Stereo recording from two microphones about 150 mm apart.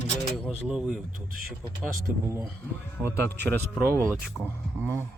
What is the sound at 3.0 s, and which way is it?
Speech, 10° left (ahead or behind).